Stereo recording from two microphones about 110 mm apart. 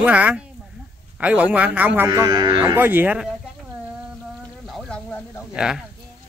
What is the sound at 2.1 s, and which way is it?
Speech, 35° right (ahead or behind).